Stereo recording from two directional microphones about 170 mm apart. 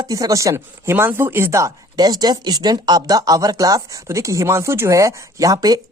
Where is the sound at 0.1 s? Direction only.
20° right (ahead or behind).